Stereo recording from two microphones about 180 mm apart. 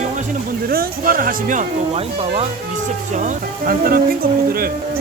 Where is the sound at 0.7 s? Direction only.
55° right (ahead or behind).